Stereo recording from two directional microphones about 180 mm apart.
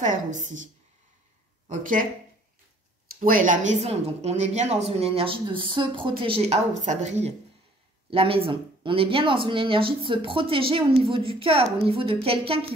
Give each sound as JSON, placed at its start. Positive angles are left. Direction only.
{"t": 0.0, "sound": "a woman's voice", "side_deg": -45}
{"t": 1.7, "sound": "a woman's voice", "side_deg": -50}
{"t": 3.2, "sound": "speech", "side_deg": -50}